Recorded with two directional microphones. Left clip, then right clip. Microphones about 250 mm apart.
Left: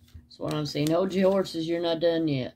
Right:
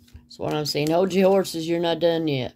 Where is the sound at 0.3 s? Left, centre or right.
Right.